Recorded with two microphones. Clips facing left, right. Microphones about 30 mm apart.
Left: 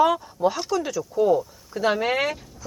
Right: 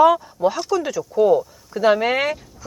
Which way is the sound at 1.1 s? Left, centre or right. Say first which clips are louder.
Right 4 dB; centre.